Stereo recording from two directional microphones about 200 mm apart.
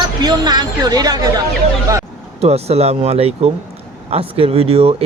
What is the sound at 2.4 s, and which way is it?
Speech, 30° right (ahead or behind).